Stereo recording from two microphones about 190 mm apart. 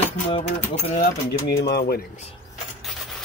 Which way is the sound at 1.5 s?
60° left (ahead or behind).